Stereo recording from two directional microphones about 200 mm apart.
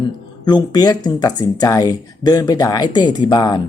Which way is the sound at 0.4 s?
20° left (ahead or behind).